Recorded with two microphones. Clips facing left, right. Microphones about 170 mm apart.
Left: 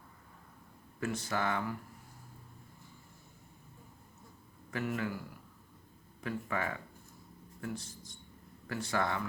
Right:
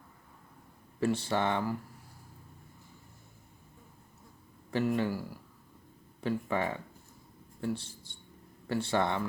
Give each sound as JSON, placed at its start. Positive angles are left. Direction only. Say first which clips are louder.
{"t": 0.9, "sound": "speech", "louder": "right 6 dB", "side_deg": -30}
{"t": 4.9, "sound": "speech", "louder": "right 6 dB", "side_deg": -30}
{"t": 6.2, "sound": "speech", "louder": "right 5 dB", "side_deg": -25}